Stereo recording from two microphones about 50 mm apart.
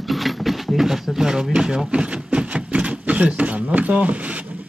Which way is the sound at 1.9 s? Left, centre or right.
Right.